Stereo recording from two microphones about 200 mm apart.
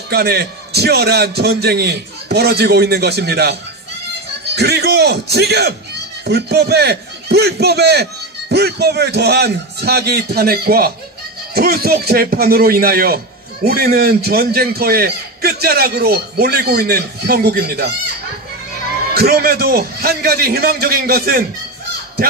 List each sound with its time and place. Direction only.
0.1 s a man's voice: 55° right (ahead or behind)
4.6 s a man's voice: 55° right (ahead or behind)
19.1 s a man's voice: 50° right (ahead or behind)